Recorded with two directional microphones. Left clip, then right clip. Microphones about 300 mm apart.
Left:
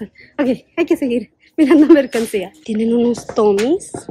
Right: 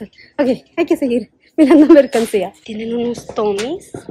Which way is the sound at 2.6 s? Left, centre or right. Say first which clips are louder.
Left 4 dB; centre.